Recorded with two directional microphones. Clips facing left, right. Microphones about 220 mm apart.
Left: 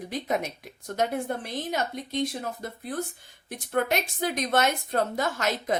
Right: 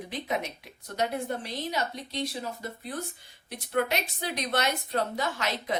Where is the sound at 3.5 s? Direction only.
50° left (ahead or behind).